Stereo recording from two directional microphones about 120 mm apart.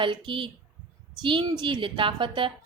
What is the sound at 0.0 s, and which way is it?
A woman's voice, 45° right (ahead or behind).